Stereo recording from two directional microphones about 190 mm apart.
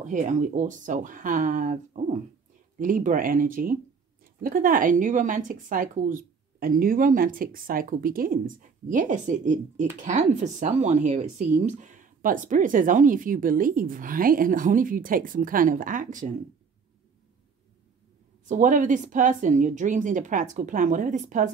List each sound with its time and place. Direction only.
0.0 s speech: 40° right (ahead or behind)
18.5 s speech: 45° right (ahead or behind)